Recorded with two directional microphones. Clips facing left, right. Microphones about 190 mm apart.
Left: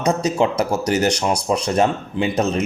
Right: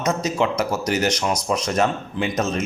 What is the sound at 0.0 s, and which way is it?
A man's voice, 30° left (ahead or behind).